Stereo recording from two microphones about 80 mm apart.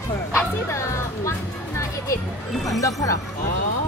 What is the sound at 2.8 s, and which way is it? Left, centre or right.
Speech, left.